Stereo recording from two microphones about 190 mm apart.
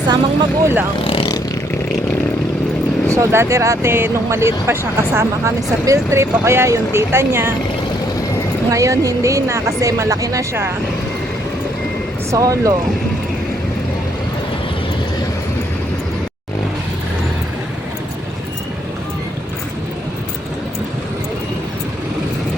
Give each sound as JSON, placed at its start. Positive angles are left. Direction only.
{"t": 0.6, "sound": "speech", "side_deg": -10}
{"t": 1.0, "sound": "speech", "side_deg": 25}
{"t": 3.1, "sound": "speech", "side_deg": -15}
{"t": 8.7, "sound": "speech", "side_deg": -15}
{"t": 12.3, "sound": "speech", "side_deg": -20}